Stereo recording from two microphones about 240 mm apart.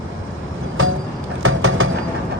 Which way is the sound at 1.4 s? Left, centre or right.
Right.